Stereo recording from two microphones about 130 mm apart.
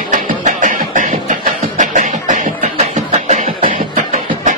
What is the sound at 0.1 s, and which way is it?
Beatboxing, 75° right (ahead or behind).